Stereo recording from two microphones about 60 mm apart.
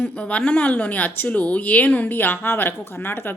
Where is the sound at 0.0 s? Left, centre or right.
Left.